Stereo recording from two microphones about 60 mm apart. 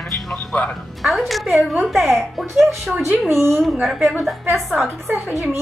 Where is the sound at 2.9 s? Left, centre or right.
Right.